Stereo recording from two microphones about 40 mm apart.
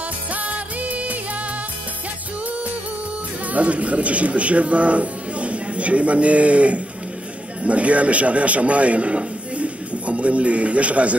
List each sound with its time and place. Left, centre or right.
0.3 s music: right
3.5 s a man's voice: right